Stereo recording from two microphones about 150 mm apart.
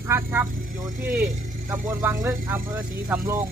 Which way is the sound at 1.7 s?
15° right (ahead or behind).